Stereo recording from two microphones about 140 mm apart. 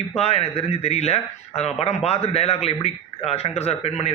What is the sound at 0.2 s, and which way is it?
A man's voice, 45° left (ahead or behind).